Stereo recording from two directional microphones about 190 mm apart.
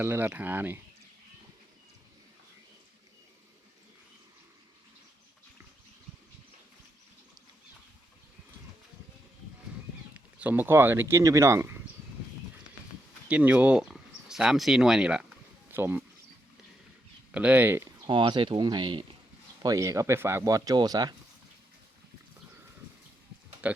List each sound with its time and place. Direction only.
0.0 s speech: 10° right (ahead or behind)
10.2 s speech: 10° right (ahead or behind)
13.2 s speech: 10° right (ahead or behind)
17.3 s speech: 5° right (ahead or behind)
18.1 s speech: 25° right (ahead or behind)
23.6 s speech: 5° right (ahead or behind)